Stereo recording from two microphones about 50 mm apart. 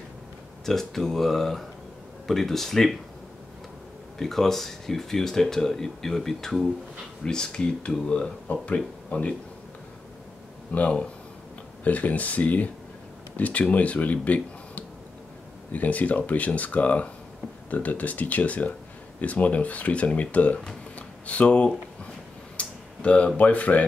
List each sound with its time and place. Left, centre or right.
0.7 s speech: centre
4.2 s speech: centre; by 9.3 s left
10.7 s speech: left